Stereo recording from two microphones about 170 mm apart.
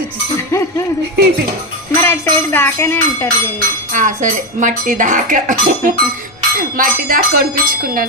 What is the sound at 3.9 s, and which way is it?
Speech, 45° right (ahead or behind).